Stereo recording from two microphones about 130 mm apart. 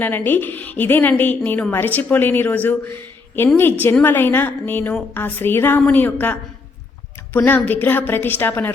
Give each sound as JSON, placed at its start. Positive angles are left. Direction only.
{"t": 0.0, "sound": "a woman's voice", "side_deg": 15}